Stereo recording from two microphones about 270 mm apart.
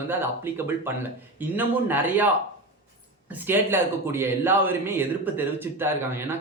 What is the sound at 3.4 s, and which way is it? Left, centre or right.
A man's voice, centre.